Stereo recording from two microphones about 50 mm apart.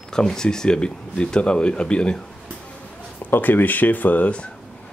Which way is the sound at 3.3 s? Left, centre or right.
Left.